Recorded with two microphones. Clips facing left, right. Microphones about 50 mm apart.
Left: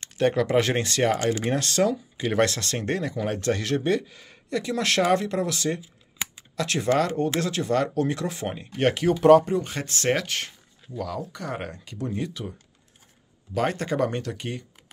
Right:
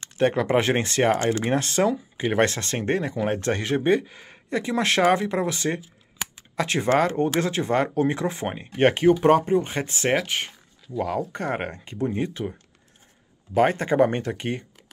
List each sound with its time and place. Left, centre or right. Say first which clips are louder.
0.2 s speech: right 1 dB; right
1.4 s speech: right 1 dB; right
11.0 s speech: right 5 dB; right
13.6 s speech: right 5 dB; right